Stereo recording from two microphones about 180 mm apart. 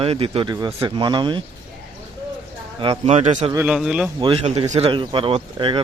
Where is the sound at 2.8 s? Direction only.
35° right (ahead or behind).